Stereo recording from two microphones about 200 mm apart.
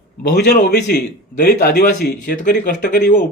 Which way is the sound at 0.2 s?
50° left (ahead or behind).